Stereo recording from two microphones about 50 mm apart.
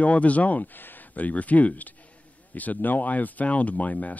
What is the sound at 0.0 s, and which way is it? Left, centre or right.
Speech, left.